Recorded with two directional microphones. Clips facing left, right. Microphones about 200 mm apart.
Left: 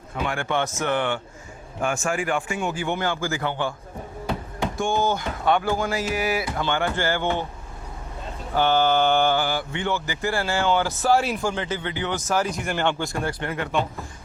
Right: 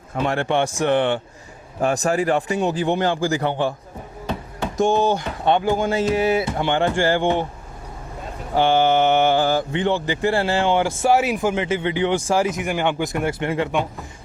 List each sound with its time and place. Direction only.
0.1 s a man's voice: 40° right (ahead or behind)
4.8 s a man's voice: 35° right (ahead or behind)
5.2 s speech: 20° right (ahead or behind)
8.5 s speech: 25° right (ahead or behind)
9.4 s speech: 40° right (ahead or behind)
12.5 s speech: 15° right (ahead or behind)